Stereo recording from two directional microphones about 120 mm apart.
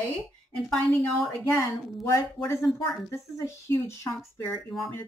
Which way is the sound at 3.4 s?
25° left (ahead or behind).